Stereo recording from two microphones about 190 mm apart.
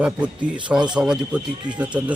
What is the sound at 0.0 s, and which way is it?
Speech, 5° right (ahead or behind).